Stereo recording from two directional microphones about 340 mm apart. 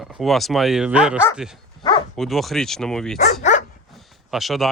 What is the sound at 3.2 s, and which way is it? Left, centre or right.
Speech, left.